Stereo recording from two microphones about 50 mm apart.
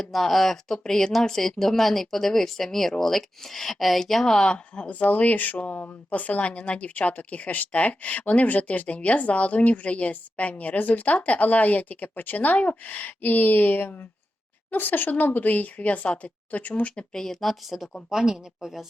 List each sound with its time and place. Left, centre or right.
0.0 s speech: centre
4.4 s speech: left
16.9 s speech: centre
18.1 s a woman's voice: centre